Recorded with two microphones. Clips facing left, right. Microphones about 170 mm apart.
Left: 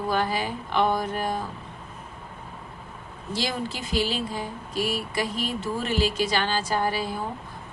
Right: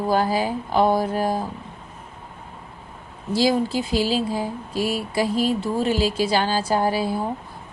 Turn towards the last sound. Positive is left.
turn(degrees=-30)  # may be behind; listen again after turning